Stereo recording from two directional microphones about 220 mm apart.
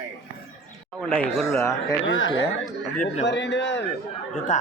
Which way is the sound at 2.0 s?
60° left (ahead or behind).